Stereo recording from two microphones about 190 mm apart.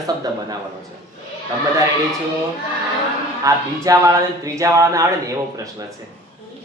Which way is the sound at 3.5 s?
15° right (ahead or behind).